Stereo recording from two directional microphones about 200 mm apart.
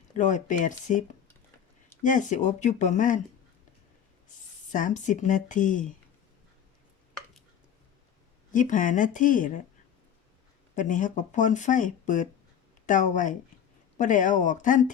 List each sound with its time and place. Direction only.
0.2 s speech: 40° left (ahead or behind)
4.7 s speech: 40° left (ahead or behind)
8.5 s speech: 40° left (ahead or behind)
10.8 s speech: 40° left (ahead or behind)